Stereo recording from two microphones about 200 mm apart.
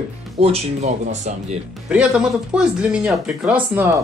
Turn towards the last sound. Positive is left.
turn(degrees=-10)  # may be behind; listen again after turning